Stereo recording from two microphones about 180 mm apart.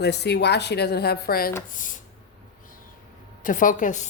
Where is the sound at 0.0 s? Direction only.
70° left (ahead or behind); by 2.0 s 45° left (ahead or behind).